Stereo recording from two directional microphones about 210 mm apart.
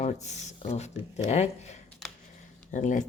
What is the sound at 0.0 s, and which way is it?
Speech, 35° left (ahead or behind).